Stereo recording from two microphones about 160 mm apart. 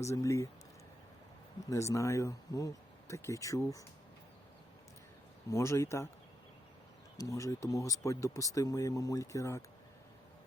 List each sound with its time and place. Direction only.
0.0 s speech: 20° left (ahead or behind)
1.7 s speech: 20° left (ahead or behind)
5.5 s speech: 20° left (ahead or behind)
7.2 s speech: 20° left (ahead or behind)